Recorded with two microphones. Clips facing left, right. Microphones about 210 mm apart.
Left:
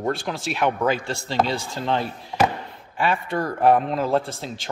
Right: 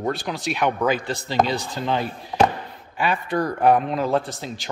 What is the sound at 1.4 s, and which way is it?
Speech, 30° left (ahead or behind).